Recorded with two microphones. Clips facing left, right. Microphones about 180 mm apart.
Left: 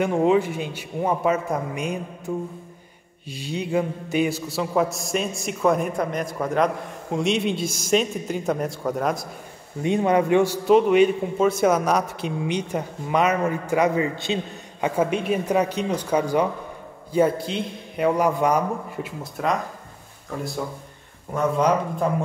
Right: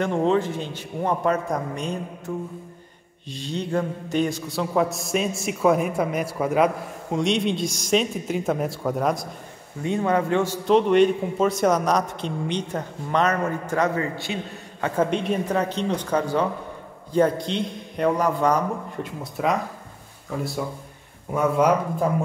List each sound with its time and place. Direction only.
0.0 s a man's voice: 10° left (ahead or behind)
9.8 s a man's voice: 15° left (ahead or behind)
19.0 s a man's voice: centre (ahead or behind)
21.3 s speech: 10° right (ahead or behind)